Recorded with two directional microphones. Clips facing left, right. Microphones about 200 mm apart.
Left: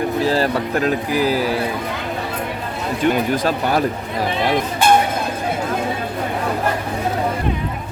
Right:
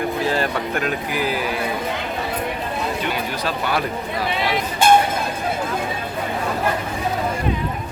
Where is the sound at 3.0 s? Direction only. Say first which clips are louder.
Left 7 dB; 50° left (ahead or behind).